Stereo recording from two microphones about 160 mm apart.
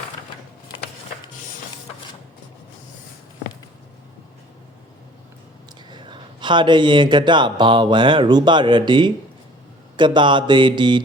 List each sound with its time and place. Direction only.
5.9 s speech: 30° right (ahead or behind)